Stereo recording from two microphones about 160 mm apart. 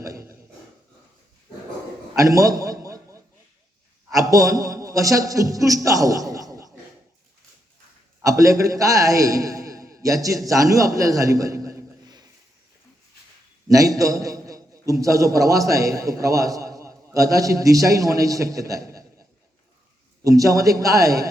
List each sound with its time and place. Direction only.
2.1 s a sound: 20° right (ahead or behind)
4.1 s a man's voice: 20° right (ahead or behind)
8.2 s a man's voice: 20° right (ahead or behind)
13.7 s a man's voice: 20° right (ahead or behind)
20.2 s a man's voice: 20° right (ahead or behind)